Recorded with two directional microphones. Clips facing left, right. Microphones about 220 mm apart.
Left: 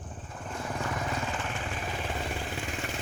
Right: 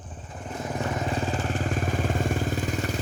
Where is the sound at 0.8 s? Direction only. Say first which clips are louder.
Right 6 dB; 25° right (ahead or behind).